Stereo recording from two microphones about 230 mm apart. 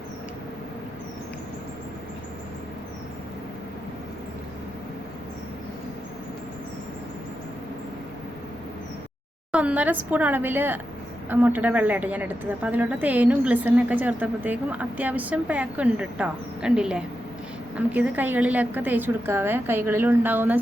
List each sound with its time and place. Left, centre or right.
9.5 s a woman's voice: centre